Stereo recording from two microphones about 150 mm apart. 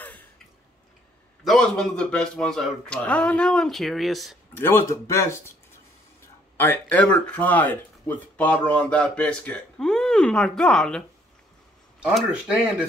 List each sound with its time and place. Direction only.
1.4 s speech: centre (ahead or behind)
4.6 s speech: 15° left (ahead or behind)
6.5 s speech: 15° left (ahead or behind); by 12.5 s 5° right (ahead or behind)